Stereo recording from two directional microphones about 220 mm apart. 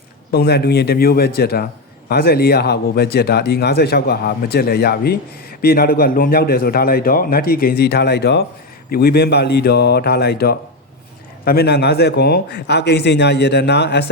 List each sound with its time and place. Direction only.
0.3 s speech: 45° left (ahead or behind)